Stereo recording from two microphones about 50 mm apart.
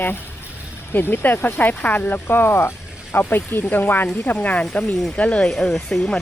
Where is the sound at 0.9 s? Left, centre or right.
Left.